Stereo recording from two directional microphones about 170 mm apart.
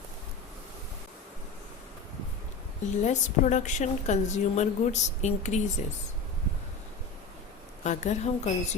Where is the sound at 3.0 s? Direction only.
45° left (ahead or behind).